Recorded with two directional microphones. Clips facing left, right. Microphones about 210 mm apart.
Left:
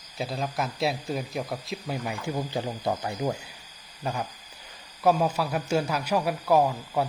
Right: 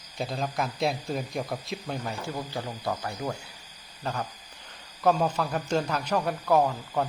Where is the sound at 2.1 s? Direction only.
15° left (ahead or behind).